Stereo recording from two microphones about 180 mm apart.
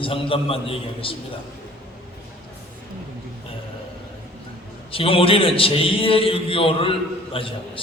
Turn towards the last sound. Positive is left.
turn(degrees=30)  # may be behind; listen again after turning